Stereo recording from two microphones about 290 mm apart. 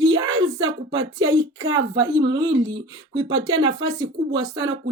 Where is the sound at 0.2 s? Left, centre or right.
Centre.